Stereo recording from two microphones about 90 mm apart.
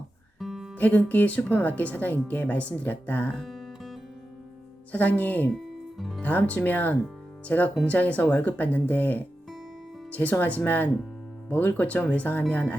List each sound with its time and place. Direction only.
0.3 s music: 5° right (ahead or behind)
0.8 s speech: 15° left (ahead or behind)
3.3 s music: centre (ahead or behind)
4.9 s speech: 20° left (ahead or behind)
5.5 s music: centre (ahead or behind)
6.2 s speech: 15° left (ahead or behind)